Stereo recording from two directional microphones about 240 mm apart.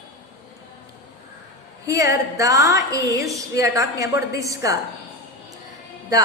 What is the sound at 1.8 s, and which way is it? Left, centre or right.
A woman's voice, centre.